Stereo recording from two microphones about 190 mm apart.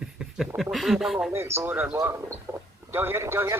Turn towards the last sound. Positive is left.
turn(degrees=-15)  # may be behind; listen again after turning